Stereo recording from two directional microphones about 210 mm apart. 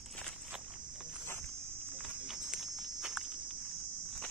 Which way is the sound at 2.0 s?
Centre (ahead or behind).